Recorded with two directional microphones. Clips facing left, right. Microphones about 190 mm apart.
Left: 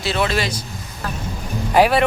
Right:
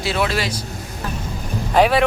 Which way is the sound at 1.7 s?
Centre (ahead or behind).